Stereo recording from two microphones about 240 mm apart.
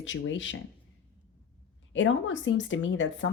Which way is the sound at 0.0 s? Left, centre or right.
Left.